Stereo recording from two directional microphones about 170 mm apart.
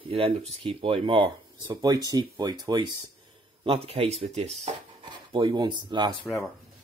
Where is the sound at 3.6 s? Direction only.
35° right (ahead or behind).